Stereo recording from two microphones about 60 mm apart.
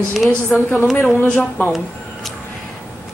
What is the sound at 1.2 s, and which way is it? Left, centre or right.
Speech, left.